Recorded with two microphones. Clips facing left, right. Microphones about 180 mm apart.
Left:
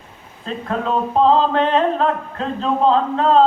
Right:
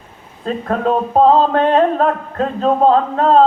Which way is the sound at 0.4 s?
45° right (ahead or behind).